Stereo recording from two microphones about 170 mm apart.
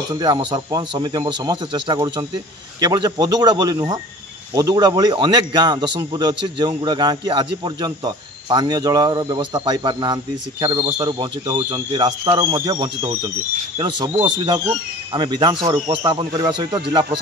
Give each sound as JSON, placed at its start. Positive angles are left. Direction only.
{"t": 0.1, "sound": "a man's voice", "side_deg": -25}